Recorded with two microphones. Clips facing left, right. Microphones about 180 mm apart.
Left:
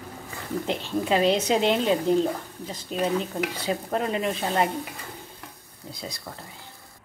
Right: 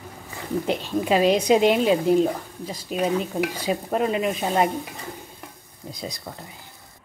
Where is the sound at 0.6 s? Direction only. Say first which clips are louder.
Right 2 dB; 15° right (ahead or behind).